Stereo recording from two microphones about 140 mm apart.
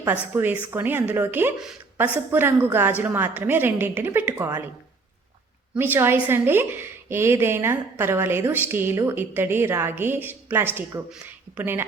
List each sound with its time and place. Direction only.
0.0 s a woman's voice: 15° right (ahead or behind)
5.7 s a woman's voice: 15° right (ahead or behind)